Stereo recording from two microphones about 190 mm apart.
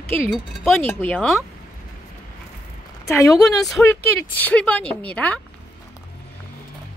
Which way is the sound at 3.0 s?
15° left (ahead or behind).